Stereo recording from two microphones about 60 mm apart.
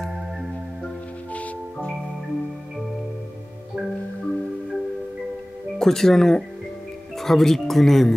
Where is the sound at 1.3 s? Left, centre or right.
Left.